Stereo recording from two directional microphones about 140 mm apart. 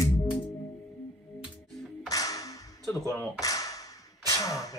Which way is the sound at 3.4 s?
25° left (ahead or behind).